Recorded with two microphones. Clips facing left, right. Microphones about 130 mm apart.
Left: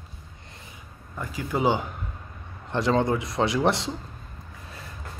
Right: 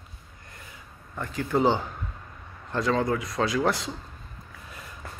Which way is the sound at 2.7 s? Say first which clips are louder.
Left 2 dB; 25° left (ahead or behind).